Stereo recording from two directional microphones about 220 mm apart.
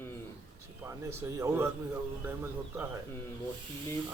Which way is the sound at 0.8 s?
15° right (ahead or behind).